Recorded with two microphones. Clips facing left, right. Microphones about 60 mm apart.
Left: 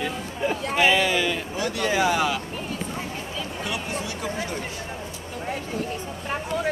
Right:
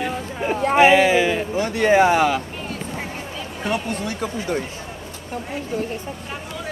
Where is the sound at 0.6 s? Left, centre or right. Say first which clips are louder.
Right 8 dB; right.